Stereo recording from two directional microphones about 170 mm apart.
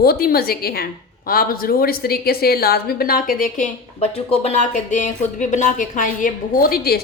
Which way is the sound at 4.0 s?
35° left (ahead or behind).